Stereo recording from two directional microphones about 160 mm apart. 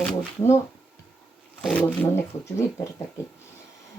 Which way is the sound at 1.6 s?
10° left (ahead or behind).